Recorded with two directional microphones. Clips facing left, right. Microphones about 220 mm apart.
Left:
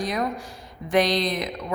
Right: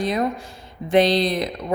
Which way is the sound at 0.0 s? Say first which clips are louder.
Right 4 dB; 25° right (ahead or behind).